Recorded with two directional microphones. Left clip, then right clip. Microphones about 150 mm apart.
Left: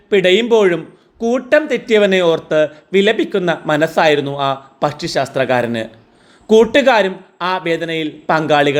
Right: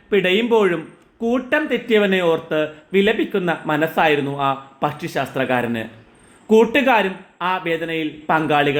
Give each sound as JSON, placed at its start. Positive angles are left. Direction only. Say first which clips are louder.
{"t": 0.1, "sound": "speech", "louder": "left 5 dB", "side_deg": 35}